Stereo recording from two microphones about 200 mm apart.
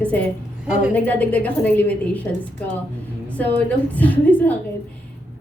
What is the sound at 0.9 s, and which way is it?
A woman's voice, 10° left (ahead or behind).